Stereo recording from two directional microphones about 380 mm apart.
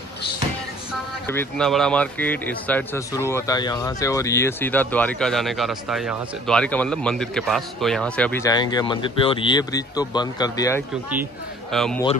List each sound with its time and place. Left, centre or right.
1.2 s speech: centre